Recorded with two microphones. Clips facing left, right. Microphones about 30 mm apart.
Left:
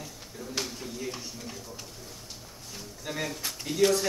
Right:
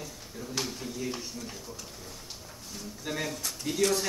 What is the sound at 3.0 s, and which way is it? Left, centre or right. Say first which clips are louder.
Speech: even; centre.